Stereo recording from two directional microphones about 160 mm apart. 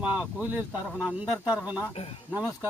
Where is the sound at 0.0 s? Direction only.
10° right (ahead or behind).